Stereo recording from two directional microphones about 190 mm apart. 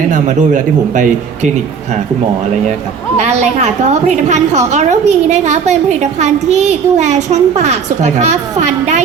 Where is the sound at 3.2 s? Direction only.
35° right (ahead or behind).